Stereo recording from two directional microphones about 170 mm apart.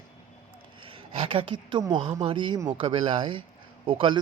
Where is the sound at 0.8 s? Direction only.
30° right (ahead or behind).